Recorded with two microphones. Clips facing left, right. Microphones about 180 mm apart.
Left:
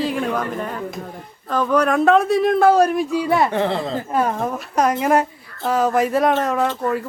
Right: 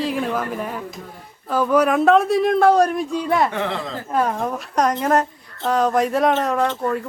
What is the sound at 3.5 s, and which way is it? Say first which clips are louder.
Speech: left 4 dB; 35° left (ahead or behind).